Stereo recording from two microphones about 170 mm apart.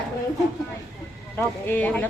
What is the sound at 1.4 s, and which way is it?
Speech, 10° left (ahead or behind).